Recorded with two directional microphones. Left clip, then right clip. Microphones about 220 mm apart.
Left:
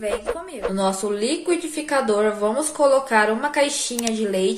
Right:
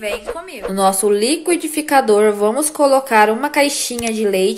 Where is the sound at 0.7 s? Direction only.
35° right (ahead or behind).